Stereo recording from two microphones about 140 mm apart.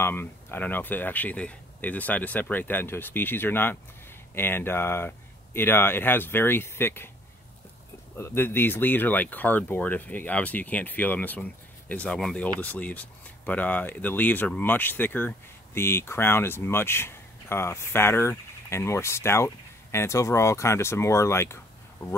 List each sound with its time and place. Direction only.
0.0 s speech: 15° left (ahead or behind)
8.2 s speech: 15° left (ahead or behind)